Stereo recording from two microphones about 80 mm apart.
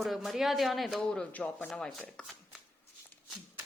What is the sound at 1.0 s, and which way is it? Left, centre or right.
Speech, centre.